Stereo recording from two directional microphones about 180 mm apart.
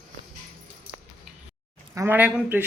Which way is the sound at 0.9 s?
30° right (ahead or behind).